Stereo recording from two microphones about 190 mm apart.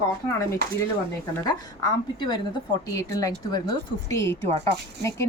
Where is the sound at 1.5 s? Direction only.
25° left (ahead or behind).